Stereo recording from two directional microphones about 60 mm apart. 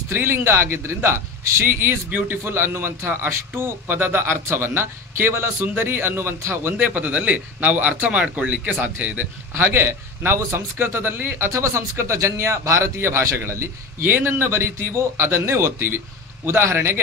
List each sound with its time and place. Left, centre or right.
0.1 s a man's voice: right
6.8 s speech: right
9.5 s a man's voice: right